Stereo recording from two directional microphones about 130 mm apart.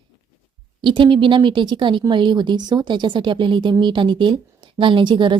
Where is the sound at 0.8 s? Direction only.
40° right (ahead or behind).